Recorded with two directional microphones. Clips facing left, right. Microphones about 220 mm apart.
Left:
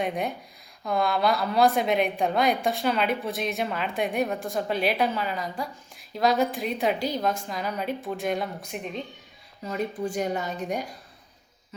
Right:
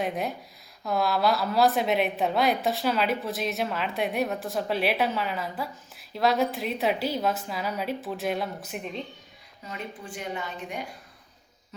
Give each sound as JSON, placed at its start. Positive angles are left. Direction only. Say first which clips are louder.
{"t": 0.0, "sound": "a woman's voice", "louder": "left 1 dB", "side_deg": 0}
{"t": 9.6, "sound": "a woman's voice", "louder": "left 9 dB", "side_deg": 40}